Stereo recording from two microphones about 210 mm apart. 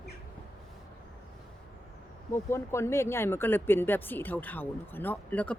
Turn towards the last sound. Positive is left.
turn(degrees=5)  # may be behind; listen again after turning